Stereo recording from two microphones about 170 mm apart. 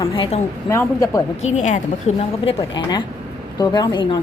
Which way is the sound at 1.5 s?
45° left (ahead or behind).